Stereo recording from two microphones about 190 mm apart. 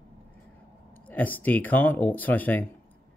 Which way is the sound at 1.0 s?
10° left (ahead or behind).